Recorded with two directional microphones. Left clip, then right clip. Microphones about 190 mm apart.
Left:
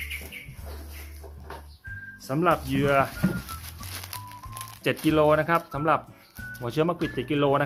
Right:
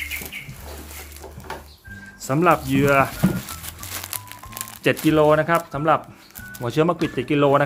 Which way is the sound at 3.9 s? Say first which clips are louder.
Right 4 dB; 10° right (ahead or behind).